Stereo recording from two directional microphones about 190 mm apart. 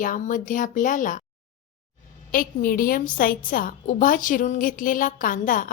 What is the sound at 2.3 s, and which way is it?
A woman's voice, 50° left (ahead or behind).